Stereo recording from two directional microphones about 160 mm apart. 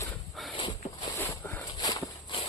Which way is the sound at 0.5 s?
30° left (ahead or behind).